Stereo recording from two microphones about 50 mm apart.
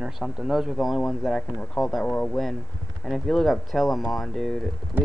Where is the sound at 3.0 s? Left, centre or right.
Centre.